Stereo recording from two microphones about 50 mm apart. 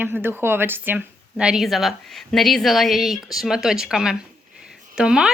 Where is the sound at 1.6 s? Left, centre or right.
Centre.